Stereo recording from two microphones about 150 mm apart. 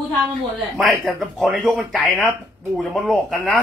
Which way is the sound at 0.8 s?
Centre (ahead or behind).